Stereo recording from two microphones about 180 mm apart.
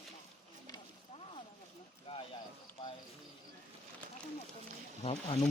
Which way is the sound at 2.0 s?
30° left (ahead or behind).